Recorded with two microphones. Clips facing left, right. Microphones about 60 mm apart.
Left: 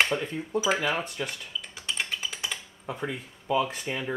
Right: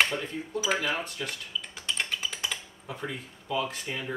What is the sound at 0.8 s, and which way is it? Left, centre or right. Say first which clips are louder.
Speech: left 2 dB; centre.